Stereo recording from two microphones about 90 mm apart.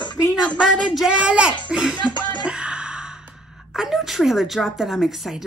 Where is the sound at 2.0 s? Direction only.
55° left (ahead or behind).